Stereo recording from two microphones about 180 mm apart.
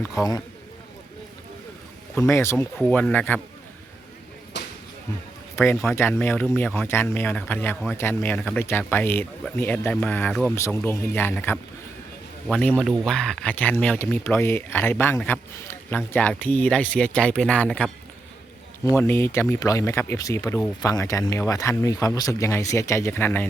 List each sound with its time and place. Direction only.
0.2 s a man's voice: 20° left (ahead or behind)
2.1 s speech: 15° left (ahead or behind)
4.5 s a sound: 70° left (ahead or behind)
5.5 s speech: 15° left (ahead or behind)